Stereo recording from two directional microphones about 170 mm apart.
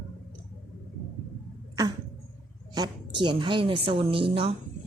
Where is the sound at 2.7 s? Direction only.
25° right (ahead or behind).